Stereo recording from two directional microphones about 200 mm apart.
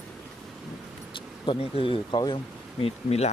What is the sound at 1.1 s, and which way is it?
Speech, 25° left (ahead or behind).